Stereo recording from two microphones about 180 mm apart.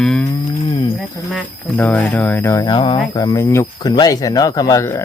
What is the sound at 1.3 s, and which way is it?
Speech, 10° left (ahead or behind).